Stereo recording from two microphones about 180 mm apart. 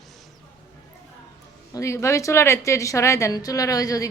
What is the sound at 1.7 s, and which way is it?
A woman's voice, 15° left (ahead or behind).